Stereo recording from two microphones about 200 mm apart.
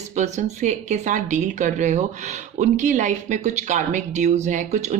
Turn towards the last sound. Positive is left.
turn(degrees=-35)  # may be behind; listen again after turning